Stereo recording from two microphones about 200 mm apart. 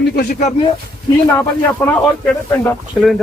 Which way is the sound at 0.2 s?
40° left (ahead or behind).